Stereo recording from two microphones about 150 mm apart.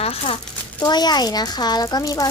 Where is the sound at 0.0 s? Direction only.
40° left (ahead or behind).